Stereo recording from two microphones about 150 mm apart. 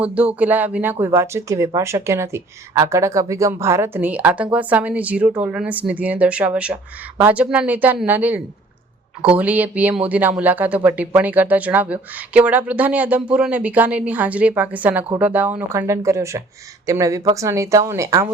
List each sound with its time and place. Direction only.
0.0 s speech: 10° right (ahead or behind)